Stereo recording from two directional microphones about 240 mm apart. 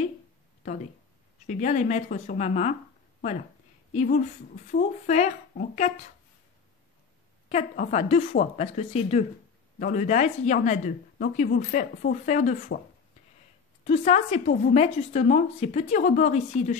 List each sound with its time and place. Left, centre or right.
1.4 s speech: left
3.9 s a woman's voice: left
7.4 s speech: left
13.8 s speech: left